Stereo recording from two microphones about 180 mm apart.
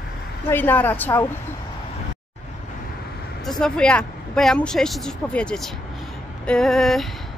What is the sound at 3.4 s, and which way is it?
Speech, centre (ahead or behind).